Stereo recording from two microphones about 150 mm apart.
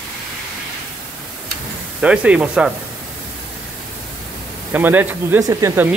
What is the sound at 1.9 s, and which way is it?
Speech, 10° right (ahead or behind).